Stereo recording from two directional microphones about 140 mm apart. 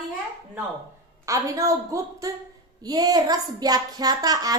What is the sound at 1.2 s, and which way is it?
Speech, 25° right (ahead or behind).